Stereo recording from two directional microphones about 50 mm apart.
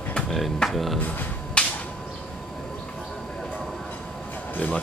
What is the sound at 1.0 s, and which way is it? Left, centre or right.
Speech, left.